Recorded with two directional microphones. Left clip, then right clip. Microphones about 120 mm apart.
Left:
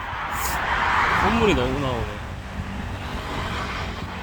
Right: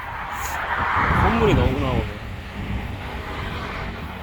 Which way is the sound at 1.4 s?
30° left (ahead or behind).